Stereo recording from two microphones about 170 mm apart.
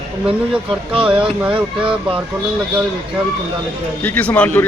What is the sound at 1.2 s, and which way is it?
Speech, 10° right (ahead or behind).